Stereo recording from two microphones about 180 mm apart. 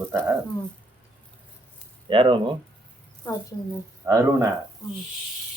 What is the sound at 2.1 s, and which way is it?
Speech, 30° right (ahead or behind).